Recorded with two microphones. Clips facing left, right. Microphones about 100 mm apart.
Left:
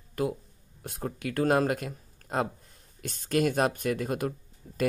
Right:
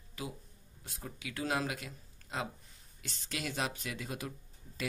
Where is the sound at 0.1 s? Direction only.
55° left (ahead or behind).